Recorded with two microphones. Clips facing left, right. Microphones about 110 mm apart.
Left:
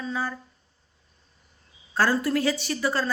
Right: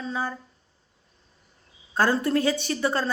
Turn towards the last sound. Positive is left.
turn(degrees=-25)  # may be behind; listen again after turning